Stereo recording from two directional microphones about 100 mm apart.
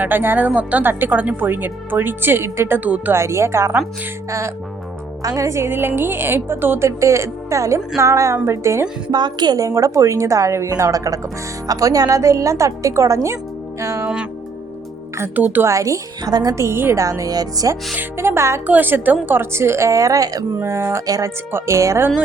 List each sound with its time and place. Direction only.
0.0 s a woman's voice: 20° right (ahead or behind)
9.0 s a woman's voice: 45° right (ahead or behind)
15.5 s a woman's voice: 30° right (ahead or behind)
17.9 s a woman's voice: 25° right (ahead or behind)
20.6 s a woman's voice: 25° right (ahead or behind)